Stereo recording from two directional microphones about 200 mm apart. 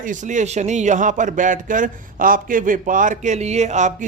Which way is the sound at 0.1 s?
40° right (ahead or behind).